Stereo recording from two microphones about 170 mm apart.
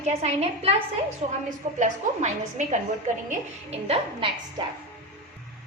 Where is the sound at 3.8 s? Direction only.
35° right (ahead or behind).